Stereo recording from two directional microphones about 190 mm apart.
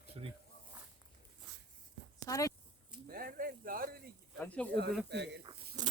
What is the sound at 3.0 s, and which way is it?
Speech, 50° right (ahead or behind).